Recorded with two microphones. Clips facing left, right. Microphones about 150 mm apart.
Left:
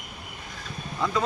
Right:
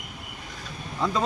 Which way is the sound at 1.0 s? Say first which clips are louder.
Right 1 dB; 25° right (ahead or behind).